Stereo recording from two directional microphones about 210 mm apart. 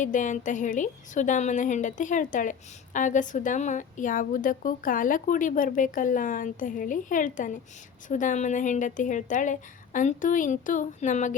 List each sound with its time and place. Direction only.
0.0 s a woman's voice: 35° left (ahead or behind)